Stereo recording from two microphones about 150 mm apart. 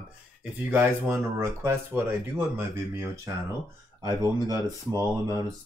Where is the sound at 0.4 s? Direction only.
10° right (ahead or behind).